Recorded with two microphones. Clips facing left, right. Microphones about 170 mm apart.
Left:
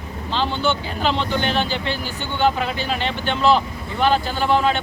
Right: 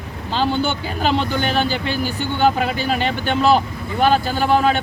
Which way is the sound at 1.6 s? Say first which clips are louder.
Right 3 dB; 10° right (ahead or behind).